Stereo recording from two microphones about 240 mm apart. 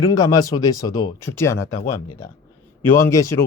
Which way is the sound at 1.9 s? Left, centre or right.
Left.